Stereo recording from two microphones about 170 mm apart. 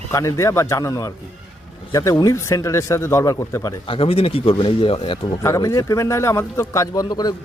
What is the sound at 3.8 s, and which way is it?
Speech, 35° left (ahead or behind).